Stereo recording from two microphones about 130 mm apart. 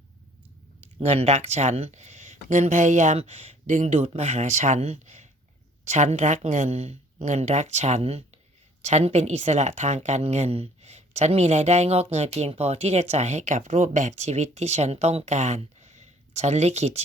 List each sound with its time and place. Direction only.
0.9 s a woman's voice: 50° right (ahead or behind)